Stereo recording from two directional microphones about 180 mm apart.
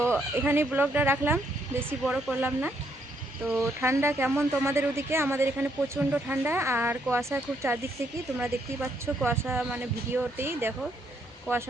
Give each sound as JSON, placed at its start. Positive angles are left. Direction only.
{"t": 0.4, "sound": "speech", "side_deg": -10}